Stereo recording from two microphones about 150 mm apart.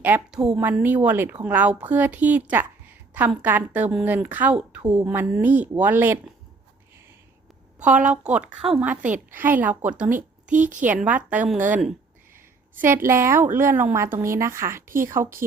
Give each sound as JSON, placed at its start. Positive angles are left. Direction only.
{"t": 0.0, "sound": "a woman's voice", "side_deg": -10}
{"t": 4.8, "sound": "speech", "side_deg": -25}
{"t": 5.4, "sound": "a woman's voice", "side_deg": -10}
{"t": 7.9, "sound": "a woman's voice", "side_deg": -10}
{"t": 10.2, "sound": "a woman's voice", "side_deg": -60}
{"t": 10.8, "sound": "a woman's voice", "side_deg": -10}